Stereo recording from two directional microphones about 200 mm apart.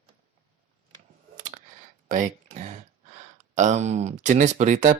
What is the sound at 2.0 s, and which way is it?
Speech, 40° right (ahead or behind).